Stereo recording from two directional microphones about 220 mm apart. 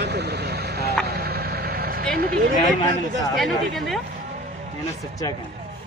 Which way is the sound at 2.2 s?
45° right (ahead or behind).